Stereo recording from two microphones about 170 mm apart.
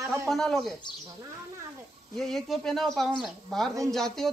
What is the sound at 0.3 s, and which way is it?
Speech, centre (ahead or behind).